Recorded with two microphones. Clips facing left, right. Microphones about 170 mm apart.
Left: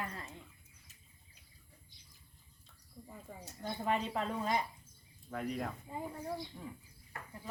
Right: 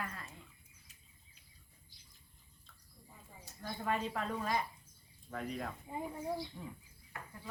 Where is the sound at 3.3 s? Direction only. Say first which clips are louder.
Left 8 dB; 70° left (ahead or behind).